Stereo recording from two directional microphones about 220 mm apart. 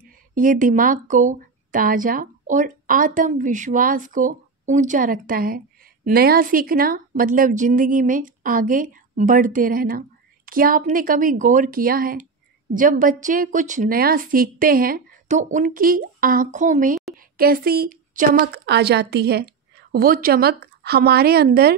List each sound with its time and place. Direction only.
0.3 s a woman's voice: 40° right (ahead or behind)